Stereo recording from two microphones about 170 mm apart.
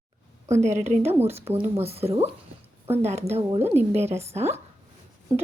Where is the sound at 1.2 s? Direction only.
35° right (ahead or behind).